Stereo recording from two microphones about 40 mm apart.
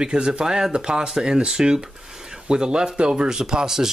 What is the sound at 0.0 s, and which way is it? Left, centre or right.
Speech, right.